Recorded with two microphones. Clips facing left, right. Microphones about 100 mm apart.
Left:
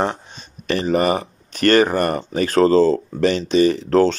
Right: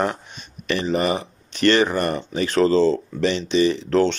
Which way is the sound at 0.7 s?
40° left (ahead or behind).